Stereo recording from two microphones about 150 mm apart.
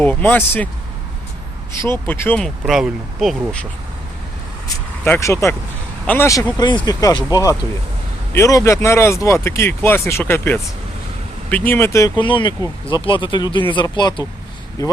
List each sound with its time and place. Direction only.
0.0 s speech: 10° left (ahead or behind)
1.8 s speech: 15° left (ahead or behind)
2.4 s speech: centre (ahead or behind)
5.0 s speech: 15° left (ahead or behind)
12.1 s speech: 35° left (ahead or behind)